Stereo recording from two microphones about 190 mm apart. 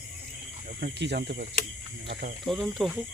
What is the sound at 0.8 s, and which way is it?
Speech, 60° right (ahead or behind).